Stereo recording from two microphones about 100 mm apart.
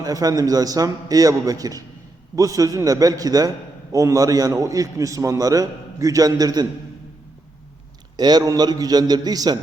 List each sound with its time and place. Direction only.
0.0 s a man's voice: 40° right (ahead or behind)
8.1 s a man's voice: 40° right (ahead or behind)